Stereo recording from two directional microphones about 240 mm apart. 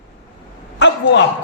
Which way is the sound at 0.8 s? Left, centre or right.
Left.